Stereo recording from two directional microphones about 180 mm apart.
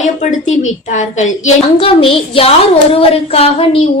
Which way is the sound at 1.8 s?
30° left (ahead or behind).